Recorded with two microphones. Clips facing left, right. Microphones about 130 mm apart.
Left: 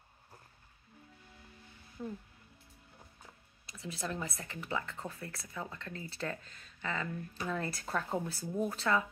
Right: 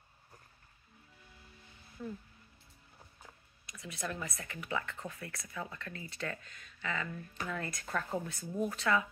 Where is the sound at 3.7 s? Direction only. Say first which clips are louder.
Even; 30° left (ahead or behind).